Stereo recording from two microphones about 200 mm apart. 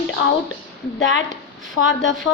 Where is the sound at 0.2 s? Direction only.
75° left (ahead or behind).